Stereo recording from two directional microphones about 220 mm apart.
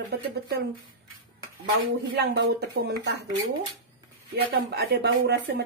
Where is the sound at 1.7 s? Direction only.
50° right (ahead or behind).